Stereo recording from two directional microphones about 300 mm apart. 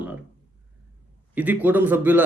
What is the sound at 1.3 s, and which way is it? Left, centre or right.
Speech, centre.